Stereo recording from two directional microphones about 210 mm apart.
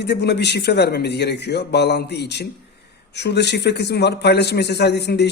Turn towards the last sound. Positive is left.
turn(degrees=55)  # may be behind; listen again after turning